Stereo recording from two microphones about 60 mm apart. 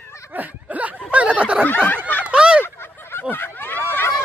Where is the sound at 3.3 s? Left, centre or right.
Left.